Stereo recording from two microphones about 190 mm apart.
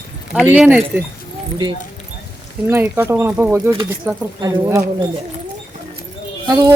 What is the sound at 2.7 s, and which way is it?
Speech, 10° right (ahead or behind).